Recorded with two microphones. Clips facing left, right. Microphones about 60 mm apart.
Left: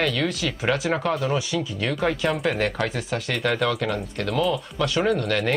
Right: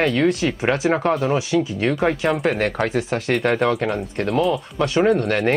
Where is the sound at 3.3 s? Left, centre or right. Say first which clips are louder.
Right 4 dB; right.